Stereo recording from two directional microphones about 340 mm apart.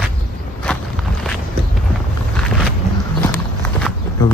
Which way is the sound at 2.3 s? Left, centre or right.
Centre.